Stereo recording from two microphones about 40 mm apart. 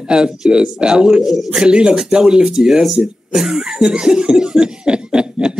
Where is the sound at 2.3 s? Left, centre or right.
Centre.